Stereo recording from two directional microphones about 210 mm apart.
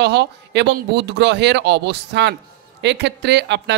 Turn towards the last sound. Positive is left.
turn(degrees=-55)  # may be behind; listen again after turning